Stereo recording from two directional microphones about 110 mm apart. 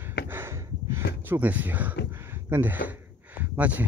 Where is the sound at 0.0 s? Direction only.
20° right (ahead or behind).